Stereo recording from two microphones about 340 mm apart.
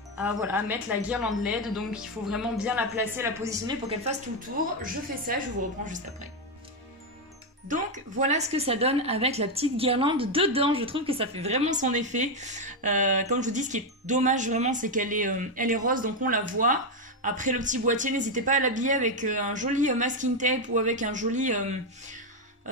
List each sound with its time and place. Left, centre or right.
0.2 s speech: centre
5.3 s speech: right
7.6 s speech: right